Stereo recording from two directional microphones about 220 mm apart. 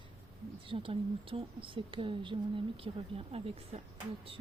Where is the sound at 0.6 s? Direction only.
25° right (ahead or behind).